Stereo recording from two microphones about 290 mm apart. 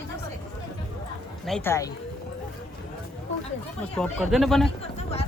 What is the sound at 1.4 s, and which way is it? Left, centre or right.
Speech, centre.